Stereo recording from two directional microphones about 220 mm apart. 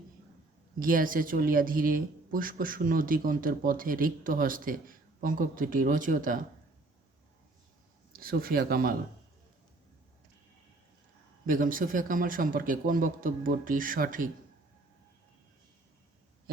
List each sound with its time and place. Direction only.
0.8 s speech: 40° right (ahead or behind)
8.1 s speech: 40° right (ahead or behind)
11.4 s speech: 40° right (ahead or behind)